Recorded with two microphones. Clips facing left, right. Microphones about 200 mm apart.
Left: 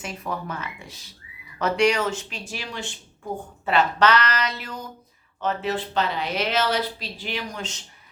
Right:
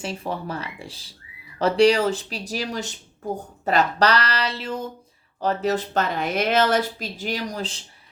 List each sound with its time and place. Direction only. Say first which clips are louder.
0.0 s speech: right 3 dB; 30° right (ahead or behind)
5.4 s a woman's voice: right 3 dB; 40° right (ahead or behind)